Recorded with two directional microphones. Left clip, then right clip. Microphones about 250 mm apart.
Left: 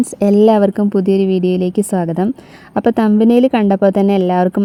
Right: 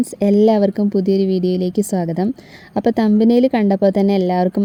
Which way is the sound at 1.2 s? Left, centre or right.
Left.